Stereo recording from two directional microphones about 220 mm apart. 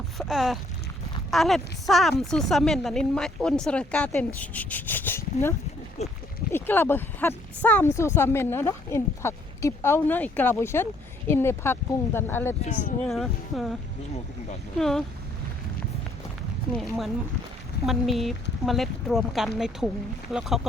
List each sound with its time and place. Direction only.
0.2 s a woman's voice: centre (ahead or behind)
6.0 s speech: 30° left (ahead or behind)
6.5 s a woman's voice: 10° left (ahead or behind)
14.8 s a woman's voice: centre (ahead or behind)
16.7 s a woman's voice: centre (ahead or behind)